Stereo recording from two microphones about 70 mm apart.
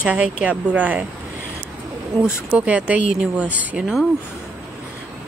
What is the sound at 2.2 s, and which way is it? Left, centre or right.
Speech, centre.